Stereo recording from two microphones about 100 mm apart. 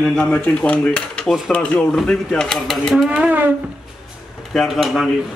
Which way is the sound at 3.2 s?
15° right (ahead or behind).